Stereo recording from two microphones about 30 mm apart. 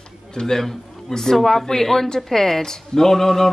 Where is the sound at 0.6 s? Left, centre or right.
Centre.